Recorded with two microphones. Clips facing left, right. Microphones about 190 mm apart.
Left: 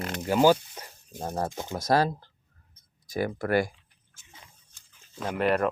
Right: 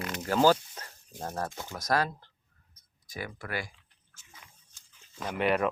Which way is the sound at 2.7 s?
40° left (ahead or behind).